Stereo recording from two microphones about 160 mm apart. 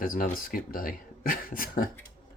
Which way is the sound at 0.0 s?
65° left (ahead or behind).